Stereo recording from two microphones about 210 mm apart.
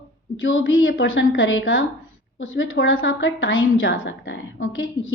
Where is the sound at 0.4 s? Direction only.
70° left (ahead or behind).